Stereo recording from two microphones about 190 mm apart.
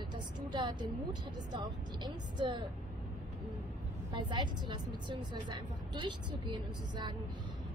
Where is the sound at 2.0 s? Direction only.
25° right (ahead or behind).